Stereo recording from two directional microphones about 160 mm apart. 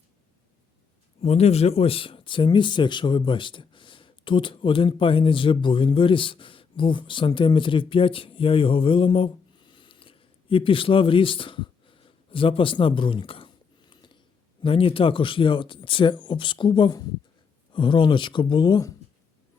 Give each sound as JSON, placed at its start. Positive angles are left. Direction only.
{"t": 1.2, "sound": "speech", "side_deg": 40}
{"t": 13.9, "sound": "a sound", "side_deg": 30}
{"t": 14.6, "sound": "speech", "side_deg": 35}